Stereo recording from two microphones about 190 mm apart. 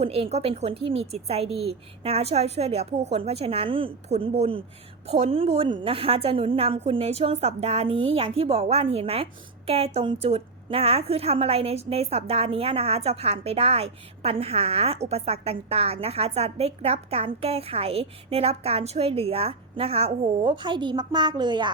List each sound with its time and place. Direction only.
0.0 s a woman's voice: 30° right (ahead or behind)